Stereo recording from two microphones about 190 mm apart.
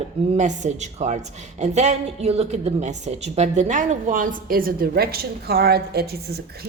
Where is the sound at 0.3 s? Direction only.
40° right (ahead or behind).